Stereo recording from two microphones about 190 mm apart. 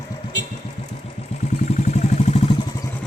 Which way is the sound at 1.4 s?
40° left (ahead or behind).